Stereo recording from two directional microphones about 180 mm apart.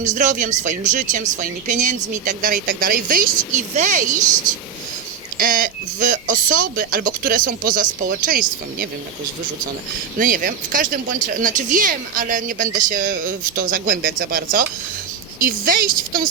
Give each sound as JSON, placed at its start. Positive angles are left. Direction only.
{"t": 0.0, "sound": "speech", "side_deg": -45}
{"t": 5.4, "sound": "speech", "side_deg": -50}
{"t": 10.2, "sound": "speech", "side_deg": -50}